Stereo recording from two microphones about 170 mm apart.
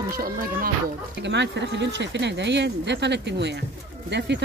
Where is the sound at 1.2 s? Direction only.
90° right.